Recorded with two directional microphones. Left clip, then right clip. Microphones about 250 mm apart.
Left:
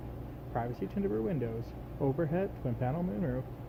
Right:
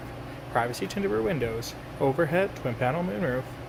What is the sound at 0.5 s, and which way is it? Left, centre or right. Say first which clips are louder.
Speech: right 9 dB; centre.